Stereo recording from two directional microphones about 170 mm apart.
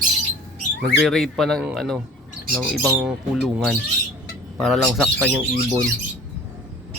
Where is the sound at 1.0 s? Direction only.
Centre (ahead or behind).